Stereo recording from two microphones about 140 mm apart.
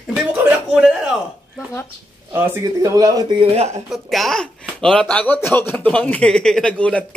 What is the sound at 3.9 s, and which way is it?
A child's voice, centre (ahead or behind).